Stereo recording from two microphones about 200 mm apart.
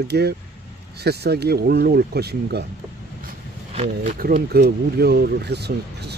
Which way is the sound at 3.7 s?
35° right (ahead or behind).